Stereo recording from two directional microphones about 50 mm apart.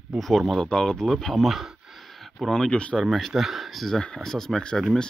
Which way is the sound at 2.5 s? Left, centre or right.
Centre.